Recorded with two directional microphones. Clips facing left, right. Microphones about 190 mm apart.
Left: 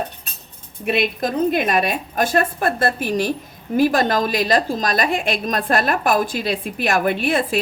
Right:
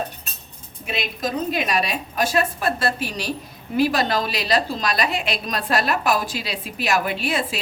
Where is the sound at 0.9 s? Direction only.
55° left (ahead or behind).